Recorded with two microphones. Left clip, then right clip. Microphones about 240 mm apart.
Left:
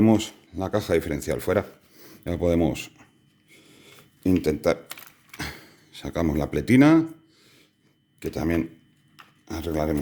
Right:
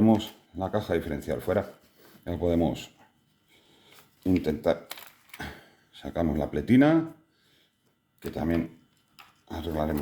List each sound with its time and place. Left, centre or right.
0.0 s speech: left
4.2 s speech: left
8.2 s speech: left